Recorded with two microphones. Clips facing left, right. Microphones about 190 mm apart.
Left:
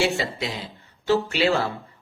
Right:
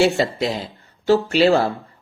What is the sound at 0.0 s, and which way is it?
Speech, 40° right (ahead or behind).